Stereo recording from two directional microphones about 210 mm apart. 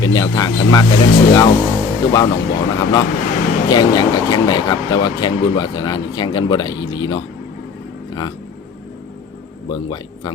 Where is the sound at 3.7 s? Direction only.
20° left (ahead or behind).